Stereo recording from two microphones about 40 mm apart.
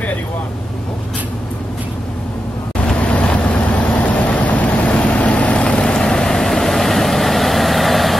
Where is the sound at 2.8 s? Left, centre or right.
Left.